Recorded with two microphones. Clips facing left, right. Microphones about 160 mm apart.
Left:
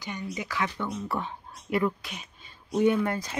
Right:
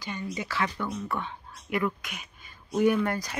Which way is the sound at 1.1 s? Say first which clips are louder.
Left 1 dB; 35° left (ahead or behind).